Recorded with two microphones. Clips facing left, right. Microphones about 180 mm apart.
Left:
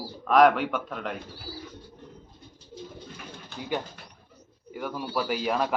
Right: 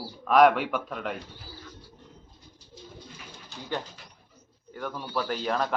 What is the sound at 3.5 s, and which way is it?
Speech, 55° left (ahead or behind).